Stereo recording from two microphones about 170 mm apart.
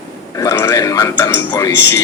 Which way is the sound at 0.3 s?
15° left (ahead or behind).